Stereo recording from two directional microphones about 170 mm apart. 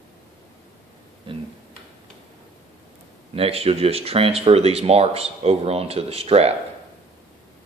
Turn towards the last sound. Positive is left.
turn(degrees=-35)  # may be behind; listen again after turning